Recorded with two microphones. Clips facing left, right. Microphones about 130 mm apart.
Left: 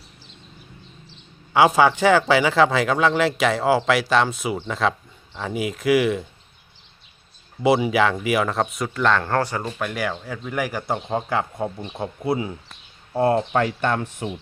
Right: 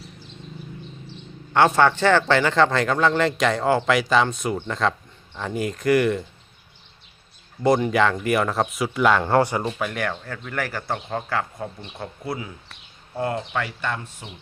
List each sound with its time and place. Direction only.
1.5 s speech: 10° left (ahead or behind)
7.6 s speech: 5° left (ahead or behind); by 9.7 s 15° right (ahead or behind)
9.7 s speech: centre (ahead or behind); by 14.3 s 60° left (ahead or behind)